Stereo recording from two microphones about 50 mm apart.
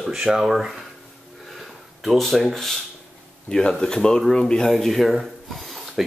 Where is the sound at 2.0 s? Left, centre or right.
Centre.